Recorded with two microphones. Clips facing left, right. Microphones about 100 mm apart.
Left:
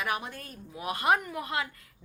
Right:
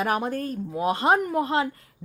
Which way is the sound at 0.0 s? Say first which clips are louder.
Right 8 dB; 40° right (ahead or behind).